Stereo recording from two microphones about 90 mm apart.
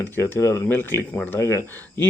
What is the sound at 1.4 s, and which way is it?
Speech, 30° left (ahead or behind).